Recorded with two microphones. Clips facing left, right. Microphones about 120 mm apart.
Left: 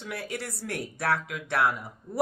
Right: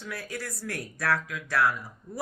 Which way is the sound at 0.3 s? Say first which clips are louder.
Left 1 dB; 25° left (ahead or behind).